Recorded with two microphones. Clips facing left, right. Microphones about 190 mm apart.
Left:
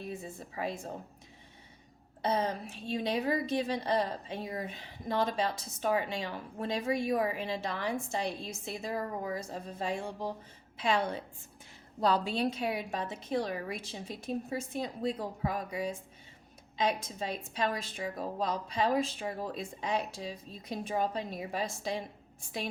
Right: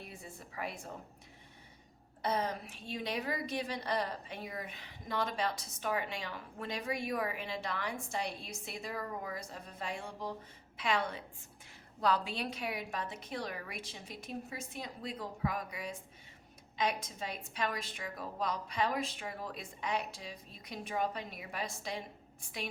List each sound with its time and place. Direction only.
0.2 s a woman's voice: 25° left (ahead or behind)
2.2 s a woman's voice: 25° left (ahead or behind)